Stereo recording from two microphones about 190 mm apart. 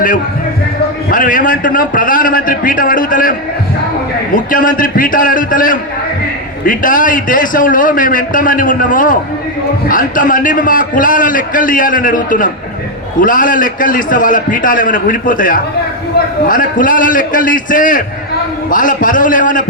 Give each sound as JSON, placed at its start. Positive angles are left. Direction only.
{"t": 1.1, "sound": "a man's voice", "side_deg": 45}
{"t": 4.5, "sound": "a man's voice", "side_deg": 45}